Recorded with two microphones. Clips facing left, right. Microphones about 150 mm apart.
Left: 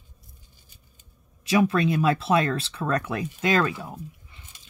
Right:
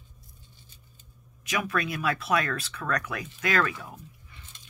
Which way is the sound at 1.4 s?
30° left (ahead or behind).